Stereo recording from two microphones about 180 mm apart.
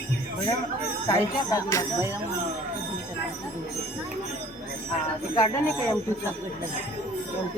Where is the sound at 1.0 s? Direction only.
20° left (ahead or behind).